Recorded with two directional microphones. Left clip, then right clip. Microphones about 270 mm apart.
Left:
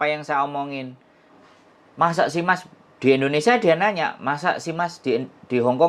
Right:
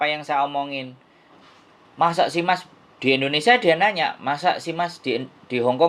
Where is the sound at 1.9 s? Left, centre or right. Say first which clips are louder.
Even; centre.